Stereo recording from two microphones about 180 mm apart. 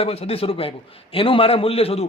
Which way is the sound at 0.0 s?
35° left (ahead or behind).